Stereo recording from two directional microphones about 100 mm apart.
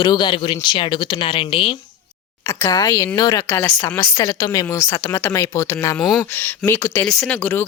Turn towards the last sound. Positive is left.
turn(degrees=20)  # may be behind; listen again after turning